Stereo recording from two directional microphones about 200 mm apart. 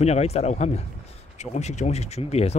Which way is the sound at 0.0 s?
30° left (ahead or behind).